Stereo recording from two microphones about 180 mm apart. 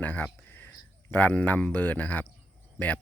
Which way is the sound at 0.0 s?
10° left (ahead or behind).